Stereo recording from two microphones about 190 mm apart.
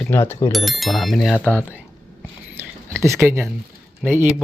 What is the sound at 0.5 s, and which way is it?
Speech, centre (ahead or behind).